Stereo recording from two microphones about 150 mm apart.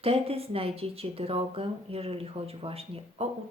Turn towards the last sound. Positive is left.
turn(degrees=-40)  # may be behind; listen again after turning